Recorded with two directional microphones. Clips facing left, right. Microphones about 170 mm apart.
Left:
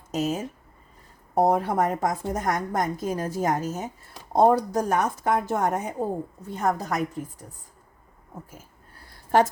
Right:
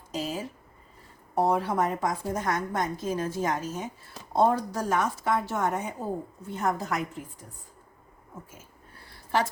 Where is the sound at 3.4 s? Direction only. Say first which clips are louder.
Left 4 dB; 45° left (ahead or behind).